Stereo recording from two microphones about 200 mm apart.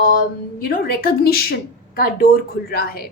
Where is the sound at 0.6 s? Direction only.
50° left (ahead or behind).